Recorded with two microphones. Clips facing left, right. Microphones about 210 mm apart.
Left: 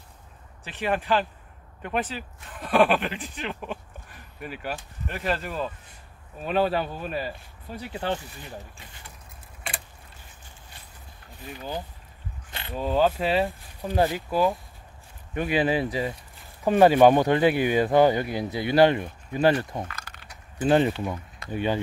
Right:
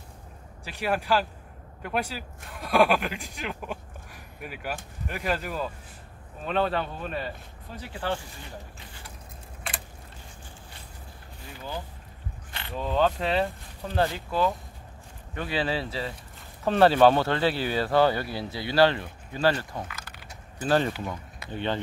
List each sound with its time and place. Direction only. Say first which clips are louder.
0.7 s speech: left 1 dB; 10° right (ahead or behind)
6.4 s speech: left 3 dB; 10° left (ahead or behind)
7.9 s speech: left 2 dB; 20° left (ahead or behind)
12.7 s speech: left 2 dB; 5° left (ahead or behind)